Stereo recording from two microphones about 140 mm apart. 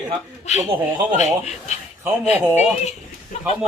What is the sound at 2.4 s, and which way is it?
Speech, 10° right (ahead or behind).